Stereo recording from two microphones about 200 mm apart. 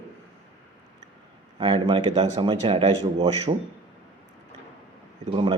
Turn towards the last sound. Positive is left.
turn(degrees=-25)  # may be behind; listen again after turning